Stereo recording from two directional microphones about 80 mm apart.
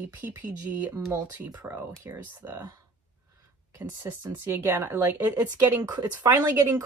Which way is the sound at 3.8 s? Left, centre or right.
Right.